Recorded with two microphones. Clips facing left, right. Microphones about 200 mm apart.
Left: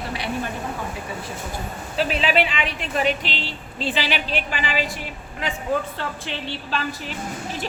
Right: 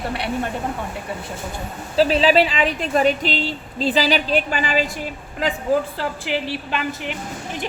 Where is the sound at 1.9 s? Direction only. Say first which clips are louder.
Right 6 dB; 35° right (ahead or behind).